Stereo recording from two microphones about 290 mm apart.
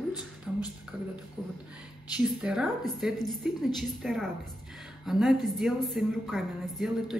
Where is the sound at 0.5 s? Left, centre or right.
Centre.